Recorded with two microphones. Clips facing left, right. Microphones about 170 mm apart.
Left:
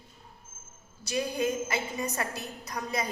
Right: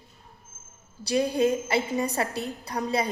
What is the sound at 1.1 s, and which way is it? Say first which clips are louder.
A woman's voice: right 6 dB; 30° right (ahead or behind).